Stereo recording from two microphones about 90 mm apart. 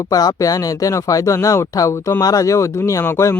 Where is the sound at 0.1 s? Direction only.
45° left (ahead or behind).